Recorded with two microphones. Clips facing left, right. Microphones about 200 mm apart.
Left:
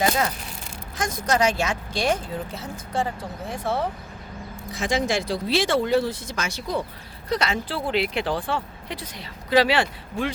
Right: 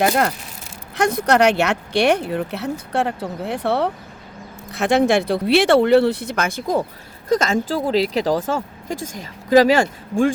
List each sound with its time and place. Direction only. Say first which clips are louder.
0.1 s speech: right 5 dB; 60° right (ahead or behind); by 10.3 s 45° right (ahead or behind)